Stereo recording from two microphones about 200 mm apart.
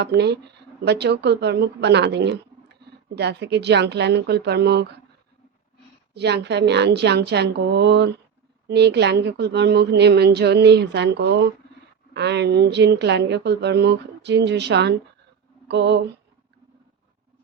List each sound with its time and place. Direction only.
0.0 s speech: 55° right (ahead or behind)
6.1 s speech: 55° right (ahead or behind)